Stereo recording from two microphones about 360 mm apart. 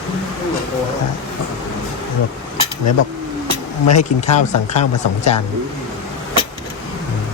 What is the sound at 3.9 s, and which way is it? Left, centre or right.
Speech, centre.